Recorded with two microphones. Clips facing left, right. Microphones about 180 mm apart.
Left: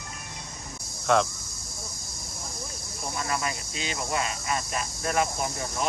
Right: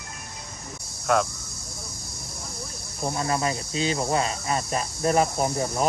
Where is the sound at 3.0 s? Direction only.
35° right (ahead or behind).